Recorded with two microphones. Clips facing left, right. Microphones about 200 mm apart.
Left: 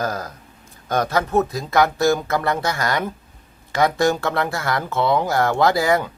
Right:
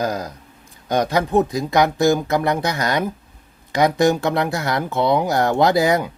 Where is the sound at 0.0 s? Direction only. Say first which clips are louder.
Right 2 dB; 15° right (ahead or behind).